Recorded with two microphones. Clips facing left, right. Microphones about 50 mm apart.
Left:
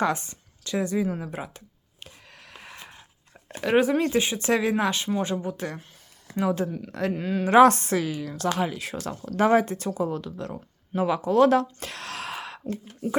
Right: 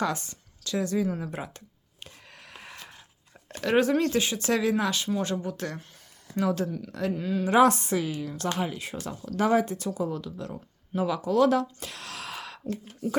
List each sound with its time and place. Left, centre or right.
0.0 s a sound: left; by 2.7 s centre
2.7 s a sound: centre
3.5 s speech: centre
7.0 s speech: left
7.5 s a woman's voice: left
8.5 s speech: left
9.1 s speech: left